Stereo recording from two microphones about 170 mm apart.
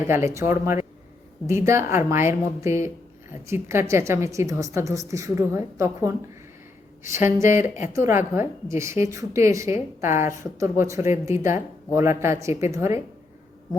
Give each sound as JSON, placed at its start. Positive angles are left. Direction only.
{"t": 0.1, "sound": "a woman's voice", "side_deg": -15}
{"t": 7.3, "sound": "a woman's voice", "side_deg": -15}